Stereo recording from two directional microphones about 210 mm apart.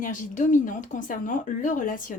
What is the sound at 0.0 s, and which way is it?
Speech, 40° left (ahead or behind).